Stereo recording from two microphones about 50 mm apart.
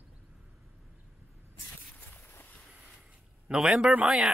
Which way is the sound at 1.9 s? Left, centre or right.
Left.